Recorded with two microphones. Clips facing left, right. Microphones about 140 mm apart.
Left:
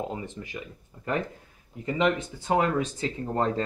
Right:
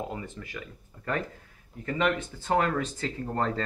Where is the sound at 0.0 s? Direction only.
20° left (ahead or behind).